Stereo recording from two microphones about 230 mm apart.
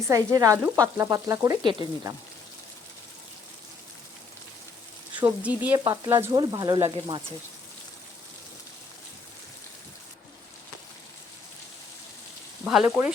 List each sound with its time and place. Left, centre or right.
0.1 s frying: centre
5.1 s speech: centre
5.6 s frying: centre
12.6 s frying: centre